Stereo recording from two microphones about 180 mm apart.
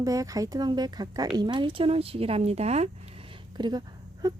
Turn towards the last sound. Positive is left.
turn(degrees=-20)  # may be behind; listen again after turning